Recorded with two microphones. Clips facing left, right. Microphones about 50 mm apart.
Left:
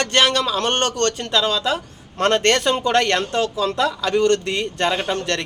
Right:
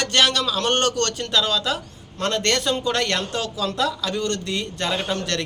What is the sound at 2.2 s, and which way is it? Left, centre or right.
Speech, left.